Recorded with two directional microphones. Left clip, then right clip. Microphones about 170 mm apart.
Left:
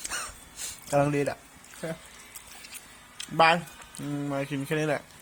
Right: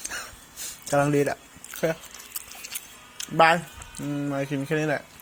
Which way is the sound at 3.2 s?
10° right (ahead or behind).